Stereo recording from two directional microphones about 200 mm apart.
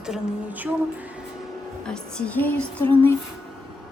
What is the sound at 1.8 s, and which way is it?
A woman's voice, 5° left (ahead or behind).